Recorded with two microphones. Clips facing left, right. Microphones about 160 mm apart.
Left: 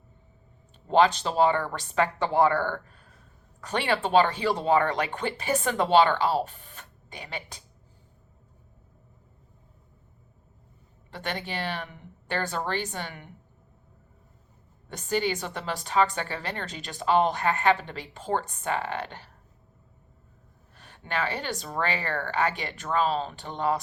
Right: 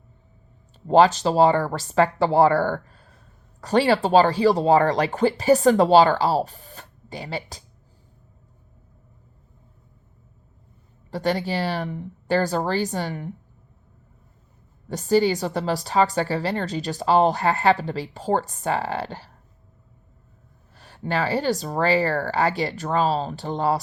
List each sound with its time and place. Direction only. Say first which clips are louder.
0.9 s a woman's voice: right 5 dB; 40° right (ahead or behind)
11.1 s a woman's voice: right 10 dB; 35° right (ahead or behind)
14.8 s a woman's voice: right 8 dB; 35° right (ahead or behind)
20.7 s a woman's voice: right 6 dB; 35° right (ahead or behind)